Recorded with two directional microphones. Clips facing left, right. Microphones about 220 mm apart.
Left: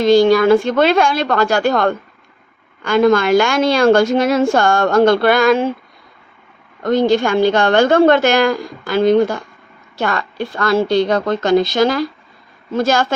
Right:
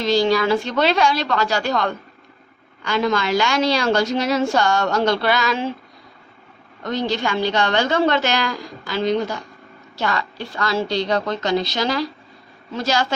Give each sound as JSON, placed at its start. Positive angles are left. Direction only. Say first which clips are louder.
{"t": 0.0, "sound": "a woman's voice", "louder": "left 7 dB", "side_deg": 50}
{"t": 6.8, "sound": "a woman's voice", "louder": "left 9 dB", "side_deg": 50}